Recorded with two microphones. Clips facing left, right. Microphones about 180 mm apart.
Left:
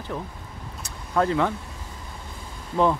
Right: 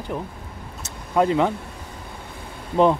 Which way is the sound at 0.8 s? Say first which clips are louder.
Right 3 dB; 20° right (ahead or behind).